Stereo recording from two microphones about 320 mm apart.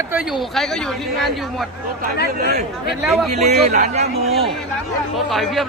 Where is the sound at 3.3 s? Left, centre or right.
Right.